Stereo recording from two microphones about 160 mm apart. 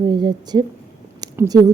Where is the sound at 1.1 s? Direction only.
20° right (ahead or behind).